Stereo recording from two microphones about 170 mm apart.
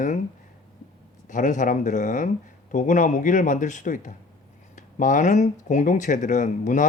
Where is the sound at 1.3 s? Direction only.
45° left (ahead or behind).